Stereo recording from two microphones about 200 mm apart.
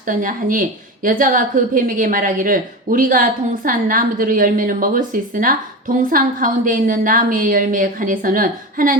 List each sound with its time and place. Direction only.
0.1 s a woman's voice: 45° right (ahead or behind)